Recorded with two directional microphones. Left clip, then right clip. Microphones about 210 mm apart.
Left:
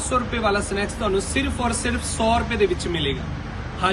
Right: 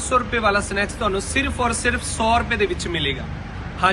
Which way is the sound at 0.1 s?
5° left (ahead or behind).